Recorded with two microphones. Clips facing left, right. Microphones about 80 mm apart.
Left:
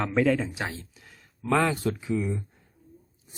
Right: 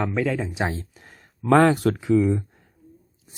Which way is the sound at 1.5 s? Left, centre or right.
Right.